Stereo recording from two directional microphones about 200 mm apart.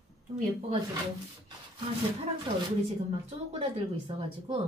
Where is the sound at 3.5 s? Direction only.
30° right (ahead or behind).